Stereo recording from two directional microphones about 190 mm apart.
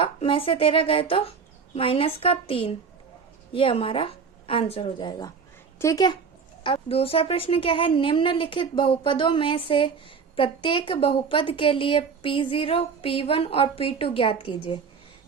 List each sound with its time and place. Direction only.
0.0 s a woman's voice: 30° left (ahead or behind)